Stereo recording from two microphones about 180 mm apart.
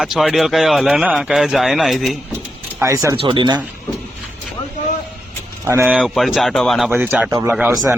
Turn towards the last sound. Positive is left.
turn(degrees=-5)  # may be behind; listen again after turning